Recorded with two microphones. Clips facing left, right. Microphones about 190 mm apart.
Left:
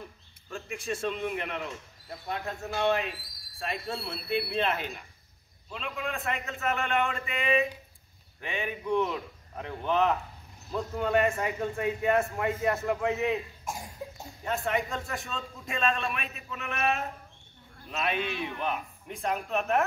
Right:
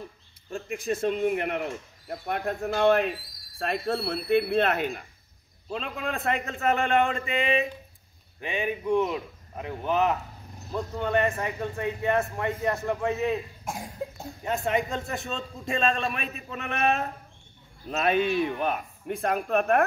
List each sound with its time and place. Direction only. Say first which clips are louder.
0.7 s speech: right 5 dB; 50° right (ahead or behind)
5.7 s a man's voice: right 4 dB; 40° right (ahead or behind)
8.4 s speech: right 5 dB; 15° right (ahead or behind)
10.7 s speech: right 1 dB; 5° left (ahead or behind)
14.4 s a man's voice: right 3 dB; 20° right (ahead or behind)
17.8 s speech: right 7 dB; 45° right (ahead or behind)